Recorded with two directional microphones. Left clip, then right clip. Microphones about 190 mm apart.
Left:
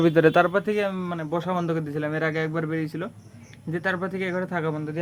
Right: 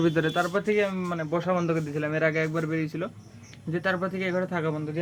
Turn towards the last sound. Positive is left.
turn(degrees=15)  # may be behind; listen again after turning